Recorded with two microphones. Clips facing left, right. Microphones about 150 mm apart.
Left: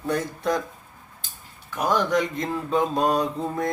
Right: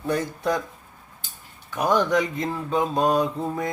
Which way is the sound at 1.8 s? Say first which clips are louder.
Right 1 dB; 15° right (ahead or behind).